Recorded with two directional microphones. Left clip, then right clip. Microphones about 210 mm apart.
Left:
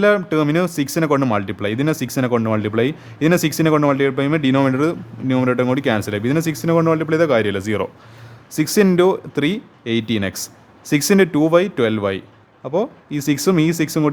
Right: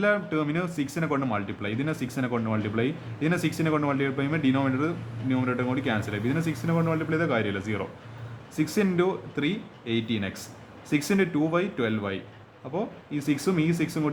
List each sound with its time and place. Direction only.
0.0 s speech: 50° left (ahead or behind)